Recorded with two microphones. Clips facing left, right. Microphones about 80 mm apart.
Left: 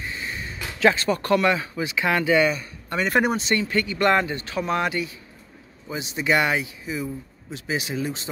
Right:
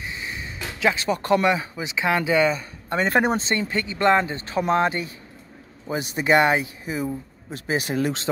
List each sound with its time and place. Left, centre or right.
0.0 s a sound: centre
0.7 s speech: centre
1.2 s speech: right
5.9 s speech: right
8.0 s speech: right